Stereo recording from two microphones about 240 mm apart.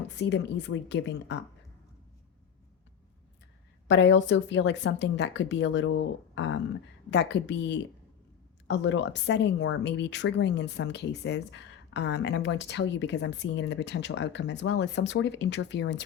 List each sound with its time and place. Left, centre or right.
0.2 s speech: left
3.8 s speech: left